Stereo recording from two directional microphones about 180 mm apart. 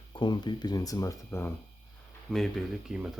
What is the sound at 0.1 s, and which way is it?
Speech, 25° left (ahead or behind).